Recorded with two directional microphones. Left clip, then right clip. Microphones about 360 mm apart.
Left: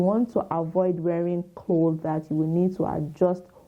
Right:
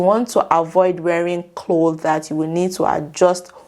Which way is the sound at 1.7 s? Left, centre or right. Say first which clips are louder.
Right 7 dB; centre.